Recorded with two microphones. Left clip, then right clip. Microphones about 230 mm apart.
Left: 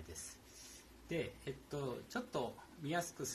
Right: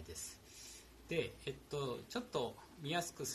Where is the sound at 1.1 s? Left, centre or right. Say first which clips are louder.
Right 2 dB; centre.